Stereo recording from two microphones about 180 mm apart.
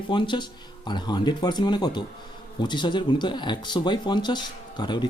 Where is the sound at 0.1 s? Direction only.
25° left (ahead or behind).